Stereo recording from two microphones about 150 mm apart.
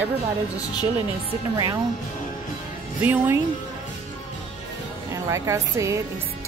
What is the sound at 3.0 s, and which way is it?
Speech, 10° right (ahead or behind).